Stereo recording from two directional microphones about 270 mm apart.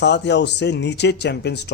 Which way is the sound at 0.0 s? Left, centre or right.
Left.